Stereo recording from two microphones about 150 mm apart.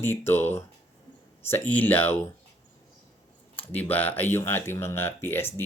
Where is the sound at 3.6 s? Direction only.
10° left (ahead or behind).